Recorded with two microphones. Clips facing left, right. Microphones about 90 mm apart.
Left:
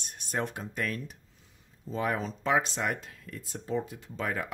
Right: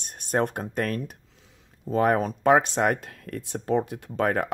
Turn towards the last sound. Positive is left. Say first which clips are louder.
# right 9 dB
turn(degrees=-60)  # may be behind; listen again after turning